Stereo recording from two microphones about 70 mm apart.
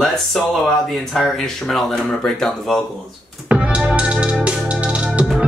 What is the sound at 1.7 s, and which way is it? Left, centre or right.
Speech, centre.